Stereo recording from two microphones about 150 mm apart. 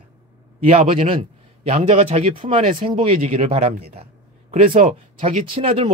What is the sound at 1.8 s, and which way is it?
A man's voice, 40° right (ahead or behind).